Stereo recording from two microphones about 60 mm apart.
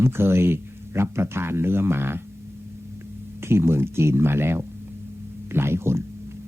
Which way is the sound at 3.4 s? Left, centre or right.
Right.